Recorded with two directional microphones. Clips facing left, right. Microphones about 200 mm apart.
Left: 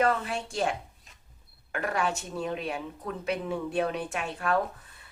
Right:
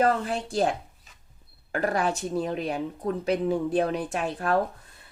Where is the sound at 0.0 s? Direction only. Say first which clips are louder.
Right 3 dB; 35° right (ahead or behind).